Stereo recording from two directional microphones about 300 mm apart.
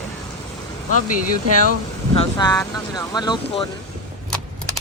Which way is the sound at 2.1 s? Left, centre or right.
Centre.